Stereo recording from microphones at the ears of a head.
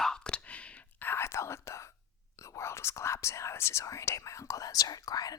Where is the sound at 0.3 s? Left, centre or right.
Left.